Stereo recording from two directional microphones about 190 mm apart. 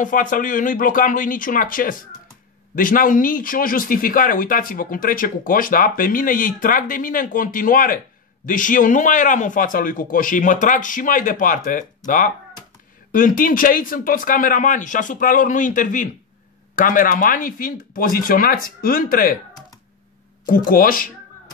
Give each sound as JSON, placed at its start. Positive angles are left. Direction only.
{"t": 0.0, "sound": "speech", "side_deg": 45}
{"t": 13.1, "sound": "speech", "side_deg": 45}
{"t": 20.4, "sound": "speech", "side_deg": 45}